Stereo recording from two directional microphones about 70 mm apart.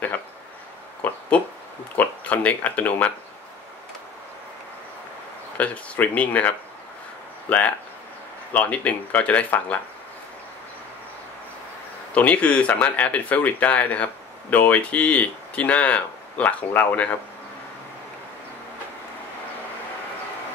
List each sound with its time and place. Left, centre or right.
1.0 s a sound: left
2.0 s speech: left
5.6 s speech: left
12.1 s speech: centre